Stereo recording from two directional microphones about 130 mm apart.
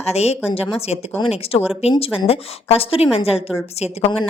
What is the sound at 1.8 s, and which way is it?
A woman's voice, 55° left (ahead or behind).